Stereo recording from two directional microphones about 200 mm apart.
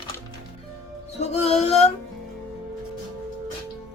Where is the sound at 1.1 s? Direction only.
30° left (ahead or behind).